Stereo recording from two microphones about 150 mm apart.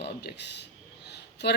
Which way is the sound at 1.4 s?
90° left.